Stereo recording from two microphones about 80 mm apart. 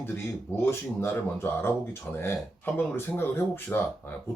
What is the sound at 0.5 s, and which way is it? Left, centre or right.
Speech, left.